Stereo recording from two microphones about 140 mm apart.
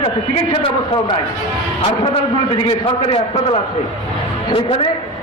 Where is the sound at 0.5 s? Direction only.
40° left (ahead or behind).